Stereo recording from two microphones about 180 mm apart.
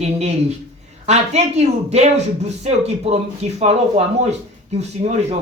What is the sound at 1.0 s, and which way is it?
Speech, 35° right (ahead or behind).